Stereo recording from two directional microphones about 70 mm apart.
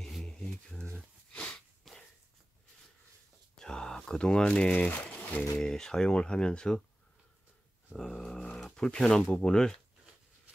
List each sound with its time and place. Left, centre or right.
0.0 s a sound: centre
1.3 s sneeze: centre
3.5 s a sound: centre
4.6 s speech: left
5.6 s speech: centre
7.9 s dog: centre
8.5 s speech: centre